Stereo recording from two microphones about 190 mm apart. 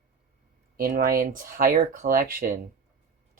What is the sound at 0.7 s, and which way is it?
Speech, 50° right (ahead or behind).